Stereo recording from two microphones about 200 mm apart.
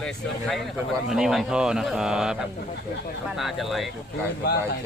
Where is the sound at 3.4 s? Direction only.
Centre (ahead or behind).